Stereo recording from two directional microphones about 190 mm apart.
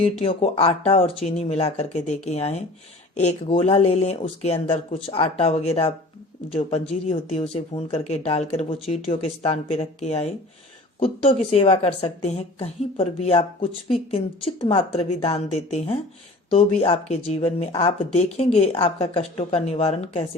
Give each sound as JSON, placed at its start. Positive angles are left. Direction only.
{"t": 0.2, "sound": "a woman's voice", "side_deg": 30}